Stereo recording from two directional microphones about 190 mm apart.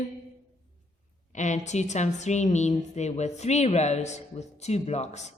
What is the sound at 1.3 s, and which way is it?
A woman's voice, 40° left (ahead or behind).